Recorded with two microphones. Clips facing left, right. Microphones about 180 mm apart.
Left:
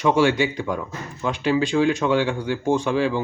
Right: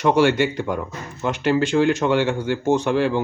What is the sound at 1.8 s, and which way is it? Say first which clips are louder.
Speech: right 1 dB; 70° right (ahead or behind).